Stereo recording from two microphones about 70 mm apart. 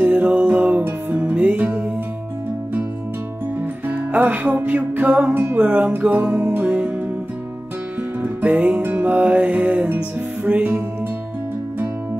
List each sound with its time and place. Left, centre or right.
0.0 s music: right
3.8 s music: right
8.2 s music: right